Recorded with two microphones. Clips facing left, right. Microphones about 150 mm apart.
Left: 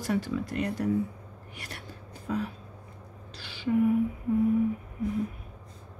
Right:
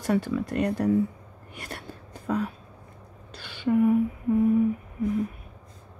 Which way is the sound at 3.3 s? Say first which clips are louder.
Right 4 dB; 55° right (ahead or behind).